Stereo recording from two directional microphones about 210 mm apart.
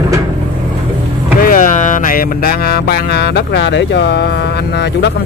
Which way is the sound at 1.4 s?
40° left (ahead or behind).